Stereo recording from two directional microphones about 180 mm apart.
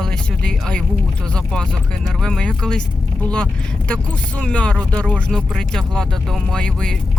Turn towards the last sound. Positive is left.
turn(degrees=5)  # may be behind; listen again after turning